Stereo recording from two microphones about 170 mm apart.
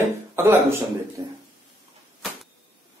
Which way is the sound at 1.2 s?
25° right (ahead or behind).